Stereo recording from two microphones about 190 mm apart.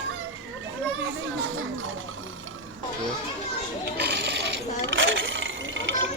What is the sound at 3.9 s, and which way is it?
Ratchet, 60° right (ahead or behind).